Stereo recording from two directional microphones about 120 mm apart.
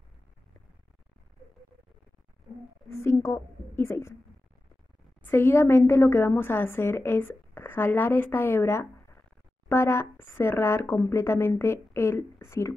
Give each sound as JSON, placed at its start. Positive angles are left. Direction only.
{"t": 2.9, "sound": "a woman's voice", "side_deg": 20}
{"t": 5.2, "sound": "a woman's voice", "side_deg": 20}